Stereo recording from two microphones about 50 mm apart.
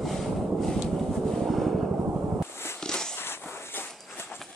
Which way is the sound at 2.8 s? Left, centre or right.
Centre.